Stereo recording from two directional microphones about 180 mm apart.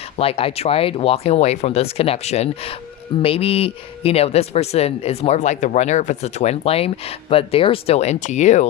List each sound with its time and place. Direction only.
0.2 s speech: 30° left (ahead or behind)